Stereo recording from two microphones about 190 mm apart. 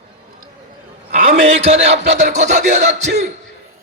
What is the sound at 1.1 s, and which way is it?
Speech, 40° right (ahead or behind).